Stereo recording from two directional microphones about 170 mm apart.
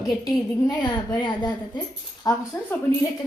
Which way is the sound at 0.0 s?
Centre (ahead or behind).